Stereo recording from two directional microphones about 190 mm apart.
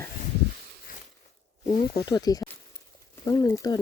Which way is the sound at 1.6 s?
45° left (ahead or behind).